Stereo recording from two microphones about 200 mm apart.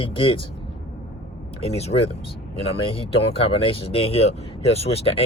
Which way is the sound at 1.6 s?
30° left (ahead or behind).